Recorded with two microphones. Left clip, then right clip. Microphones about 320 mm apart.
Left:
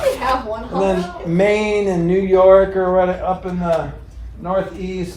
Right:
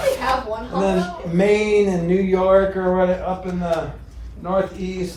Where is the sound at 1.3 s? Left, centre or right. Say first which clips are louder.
Even; left.